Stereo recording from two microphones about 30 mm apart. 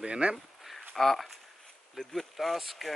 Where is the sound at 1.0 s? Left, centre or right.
Centre.